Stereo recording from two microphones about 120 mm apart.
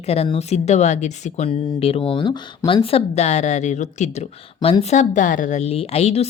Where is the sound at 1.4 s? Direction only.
55° left (ahead or behind).